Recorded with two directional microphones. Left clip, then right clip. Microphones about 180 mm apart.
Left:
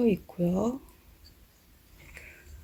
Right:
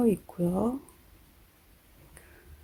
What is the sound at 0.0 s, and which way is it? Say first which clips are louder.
Speech: even; 20° right (ahead or behind).